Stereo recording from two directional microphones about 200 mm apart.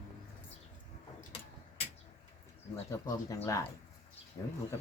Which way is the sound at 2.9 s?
15° left (ahead or behind).